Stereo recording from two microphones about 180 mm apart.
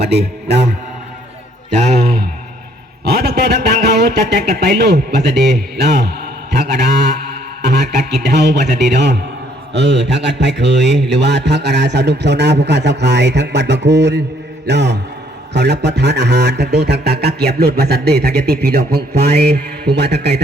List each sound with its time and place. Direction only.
0.1 s a man's voice: 70° right (ahead or behind)
3.0 s a man's voice: 60° right (ahead or behind)